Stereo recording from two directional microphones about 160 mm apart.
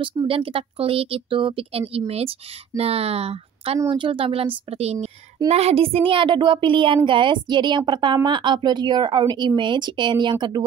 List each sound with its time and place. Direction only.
0.3 s a woman's voice: 35° right (ahead or behind)